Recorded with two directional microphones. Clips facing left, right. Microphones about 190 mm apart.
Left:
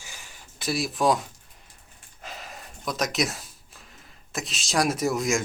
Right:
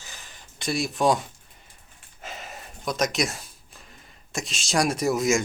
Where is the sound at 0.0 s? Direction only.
10° left (ahead or behind).